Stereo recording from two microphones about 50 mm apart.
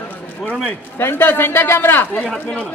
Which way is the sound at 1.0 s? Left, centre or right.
Left.